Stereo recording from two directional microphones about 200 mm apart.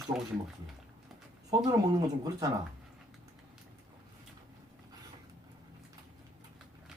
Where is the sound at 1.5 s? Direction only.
20° right (ahead or behind).